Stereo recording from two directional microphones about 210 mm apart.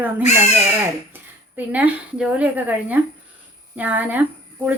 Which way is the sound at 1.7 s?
5° right (ahead or behind).